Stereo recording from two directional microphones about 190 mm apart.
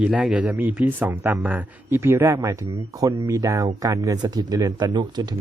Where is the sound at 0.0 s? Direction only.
5° right (ahead or behind).